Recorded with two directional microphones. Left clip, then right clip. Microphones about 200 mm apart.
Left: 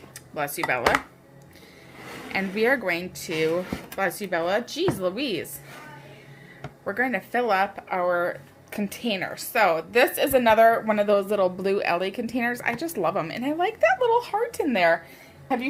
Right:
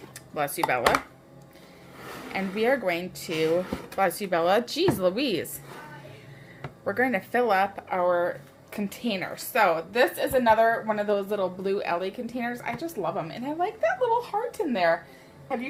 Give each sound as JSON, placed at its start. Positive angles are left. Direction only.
{"t": 0.3, "sound": "speech", "side_deg": 0}
{"t": 2.3, "sound": "speech", "side_deg": 15}
{"t": 6.8, "sound": "speech", "side_deg": -5}
{"t": 9.9, "sound": "speech", "side_deg": 30}